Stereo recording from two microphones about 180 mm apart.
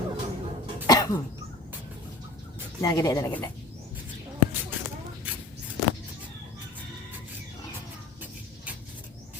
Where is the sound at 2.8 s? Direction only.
20° left (ahead or behind).